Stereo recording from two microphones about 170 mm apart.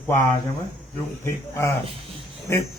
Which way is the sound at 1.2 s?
15° left (ahead or behind).